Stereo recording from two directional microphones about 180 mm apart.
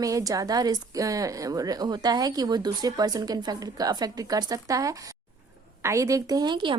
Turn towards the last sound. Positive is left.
turn(degrees=-25)  # may be behind; listen again after turning